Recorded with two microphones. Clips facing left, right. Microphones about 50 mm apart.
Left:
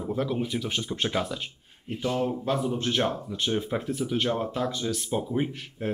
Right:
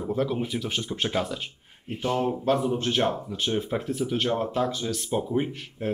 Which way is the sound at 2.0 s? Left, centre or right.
Right.